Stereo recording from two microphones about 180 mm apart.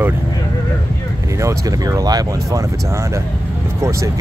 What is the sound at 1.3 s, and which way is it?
Speech, 20° right (ahead or behind).